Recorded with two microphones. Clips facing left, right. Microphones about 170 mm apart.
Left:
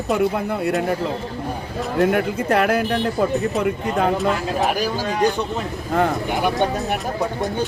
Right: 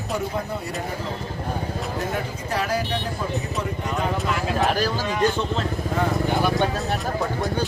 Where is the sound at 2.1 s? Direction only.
60° left (ahead or behind).